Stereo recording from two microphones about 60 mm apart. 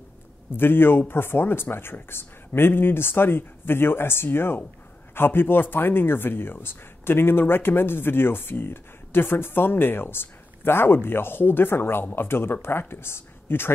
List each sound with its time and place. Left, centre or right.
0.6 s speech: left